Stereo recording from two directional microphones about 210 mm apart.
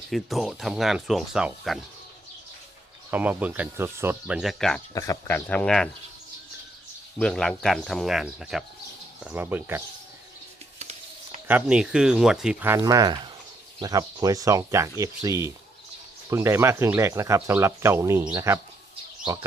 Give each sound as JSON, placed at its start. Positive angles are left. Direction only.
{"t": 0.1, "sound": "speech", "side_deg": 0}
{"t": 3.1, "sound": "speech", "side_deg": -5}
{"t": 4.9, "sound": "speech", "side_deg": 10}
{"t": 7.2, "sound": "speech", "side_deg": 5}
{"t": 10.8, "sound": "a sound", "side_deg": -30}
{"t": 11.4, "sound": "speech", "side_deg": -5}